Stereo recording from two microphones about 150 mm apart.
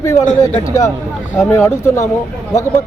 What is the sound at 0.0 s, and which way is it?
Speech, 20° left (ahead or behind).